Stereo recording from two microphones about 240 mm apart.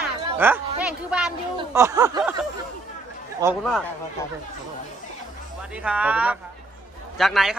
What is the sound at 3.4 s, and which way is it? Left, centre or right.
Speech, centre.